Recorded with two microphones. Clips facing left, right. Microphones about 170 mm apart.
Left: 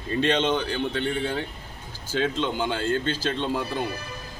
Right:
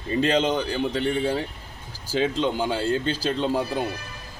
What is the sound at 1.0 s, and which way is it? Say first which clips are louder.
A man's voice: right 3 dB; 35° right (ahead or behind).